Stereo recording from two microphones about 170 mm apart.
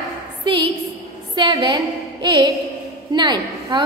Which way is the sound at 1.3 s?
25° right (ahead or behind).